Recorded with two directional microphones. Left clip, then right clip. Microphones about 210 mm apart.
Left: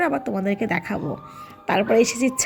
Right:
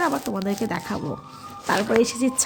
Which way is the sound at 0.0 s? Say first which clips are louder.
Left 1 dB; 5° left (ahead or behind).